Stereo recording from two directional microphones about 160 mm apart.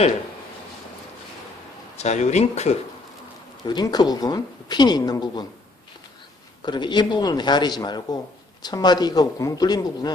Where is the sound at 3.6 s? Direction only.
25° left (ahead or behind).